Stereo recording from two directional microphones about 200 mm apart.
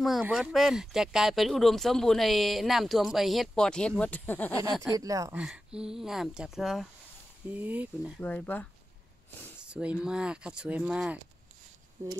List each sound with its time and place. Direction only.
0.0 s speech: centre (ahead or behind)
4.9 s speech: 15° right (ahead or behind)
5.4 s speech: 5° right (ahead or behind)
8.2 s speech: 10° left (ahead or behind)
9.6 s speech: 5° right (ahead or behind)